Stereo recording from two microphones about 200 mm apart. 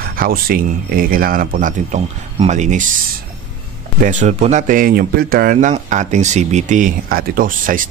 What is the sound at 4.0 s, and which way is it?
Speech, 40° right (ahead or behind).